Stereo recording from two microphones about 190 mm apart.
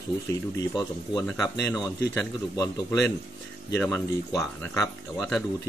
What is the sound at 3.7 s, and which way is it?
Speech, 10° left (ahead or behind).